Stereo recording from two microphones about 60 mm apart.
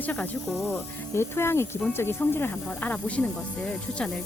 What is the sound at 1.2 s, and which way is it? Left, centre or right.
Speech, left.